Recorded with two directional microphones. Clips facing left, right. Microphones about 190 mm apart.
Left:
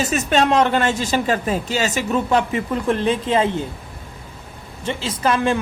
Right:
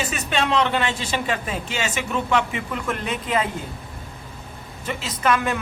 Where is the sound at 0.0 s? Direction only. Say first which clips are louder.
Left 6 dB; 40° left (ahead or behind).